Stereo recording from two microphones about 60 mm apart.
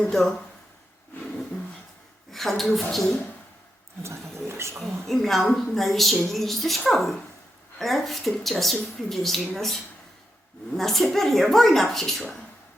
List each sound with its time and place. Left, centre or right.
0.1 s speech: centre
2.3 s speech: centre
4.4 s speech: right
4.8 s speech: centre